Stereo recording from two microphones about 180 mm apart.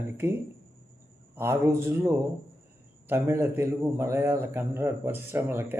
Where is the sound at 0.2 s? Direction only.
15° right (ahead or behind).